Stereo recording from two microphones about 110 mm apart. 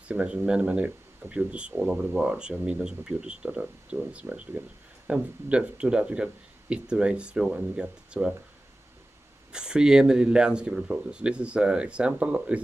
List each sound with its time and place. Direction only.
0.1 s speech: 10° right (ahead or behind)
9.5 s speech: 5° right (ahead or behind)